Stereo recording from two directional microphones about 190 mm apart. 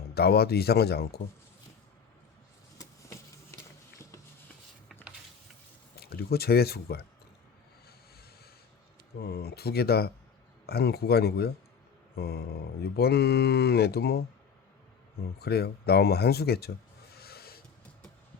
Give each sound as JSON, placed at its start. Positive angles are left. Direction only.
{"t": 0.1, "sound": "speech", "side_deg": 55}
{"t": 6.0, "sound": "speech", "side_deg": 55}
{"t": 9.2, "sound": "speech", "side_deg": 60}
{"t": 12.1, "sound": "mantra", "side_deg": 55}
{"t": 12.8, "sound": "speech", "side_deg": 60}
{"t": 15.4, "sound": "speech", "side_deg": 55}
{"t": 17.2, "sound": "a sound", "side_deg": 55}